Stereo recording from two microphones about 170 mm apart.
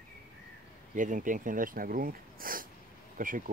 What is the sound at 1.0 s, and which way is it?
Speech, 50° right (ahead or behind).